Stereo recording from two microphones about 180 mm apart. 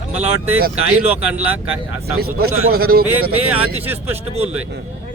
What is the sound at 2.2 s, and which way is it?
A man's voice, 60° right (ahead or behind).